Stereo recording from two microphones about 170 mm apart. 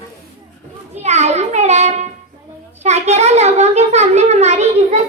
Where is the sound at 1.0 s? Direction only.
40° right (ahead or behind).